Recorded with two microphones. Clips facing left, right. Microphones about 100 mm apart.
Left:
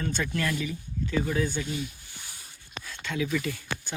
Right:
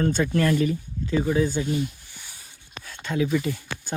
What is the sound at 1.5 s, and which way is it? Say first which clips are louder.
Speech: right 6 dB; 35° right (ahead or behind).